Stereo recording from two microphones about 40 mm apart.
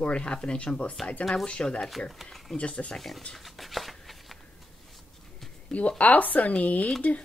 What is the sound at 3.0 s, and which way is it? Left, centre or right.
Speech, centre.